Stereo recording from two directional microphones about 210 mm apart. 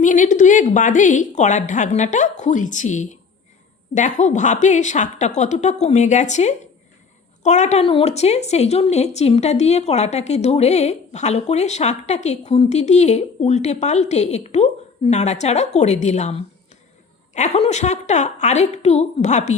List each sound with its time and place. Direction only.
0.0 s a woman's voice: 35° left (ahead or behind)